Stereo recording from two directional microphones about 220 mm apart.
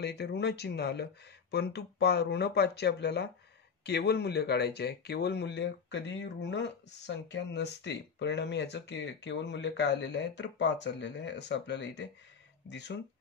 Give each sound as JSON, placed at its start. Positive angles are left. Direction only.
{"t": 0.0, "sound": "speech", "side_deg": 50}